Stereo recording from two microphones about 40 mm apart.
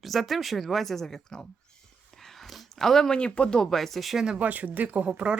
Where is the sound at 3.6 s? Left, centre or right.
Centre.